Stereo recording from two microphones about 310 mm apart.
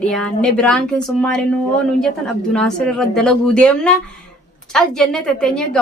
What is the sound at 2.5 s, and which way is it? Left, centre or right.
A woman's voice, centre.